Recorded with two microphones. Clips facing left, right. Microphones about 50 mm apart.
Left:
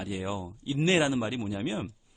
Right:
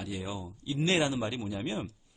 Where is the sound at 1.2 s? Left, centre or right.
Centre.